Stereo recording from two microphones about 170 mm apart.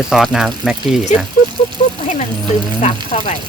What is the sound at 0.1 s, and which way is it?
Speech, centre (ahead or behind).